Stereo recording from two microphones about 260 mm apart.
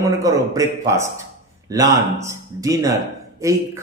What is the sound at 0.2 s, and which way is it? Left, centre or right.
Speech, centre.